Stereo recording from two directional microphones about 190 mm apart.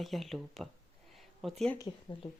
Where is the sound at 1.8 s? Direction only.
20° left (ahead or behind).